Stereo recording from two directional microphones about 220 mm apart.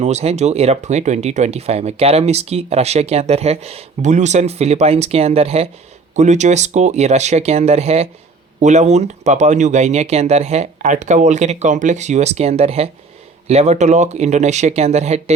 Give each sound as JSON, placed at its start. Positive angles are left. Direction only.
{"t": 0.0, "sound": "speech", "side_deg": -30}